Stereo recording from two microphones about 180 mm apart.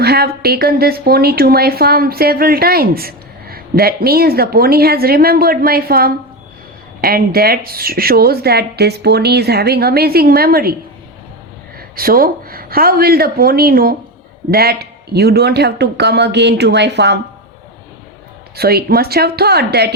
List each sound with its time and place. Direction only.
0.0 s a woman's voice: 60° right (ahead or behind)
11.8 s a woman's voice: 55° right (ahead or behind); by 17.2 s 70° right (ahead or behind)
18.5 s a woman's voice: 60° right (ahead or behind)